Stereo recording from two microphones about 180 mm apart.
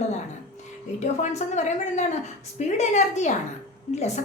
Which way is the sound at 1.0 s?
40° left (ahead or behind).